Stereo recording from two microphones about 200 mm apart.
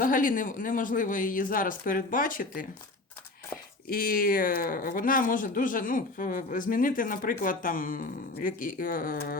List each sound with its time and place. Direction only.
0.0 s speech: 45° left (ahead or behind)
3.8 s speech: 50° left (ahead or behind)